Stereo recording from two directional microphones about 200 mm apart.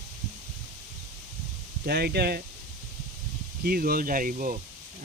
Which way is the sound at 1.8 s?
50° right (ahead or behind).